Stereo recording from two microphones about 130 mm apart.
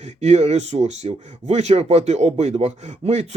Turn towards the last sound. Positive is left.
turn(degrees=-55)  # may be behind; listen again after turning